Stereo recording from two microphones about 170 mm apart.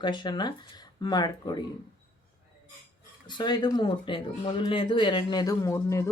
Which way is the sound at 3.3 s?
25° left (ahead or behind).